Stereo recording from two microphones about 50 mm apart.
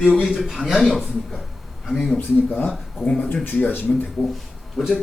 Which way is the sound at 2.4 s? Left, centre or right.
Left.